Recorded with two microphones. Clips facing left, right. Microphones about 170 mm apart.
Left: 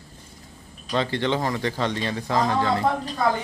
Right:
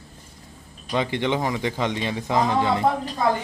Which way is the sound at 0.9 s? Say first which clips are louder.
Even; 15° right (ahead or behind).